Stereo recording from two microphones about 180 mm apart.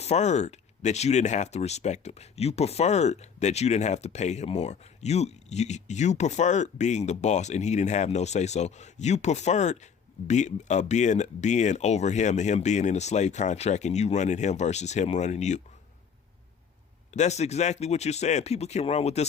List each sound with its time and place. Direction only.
0.0 s speech: 40° left (ahead or behind)
17.2 s speech: 40° left (ahead or behind)